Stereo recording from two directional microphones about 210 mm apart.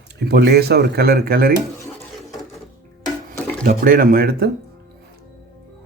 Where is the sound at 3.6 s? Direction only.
45° right (ahead or behind).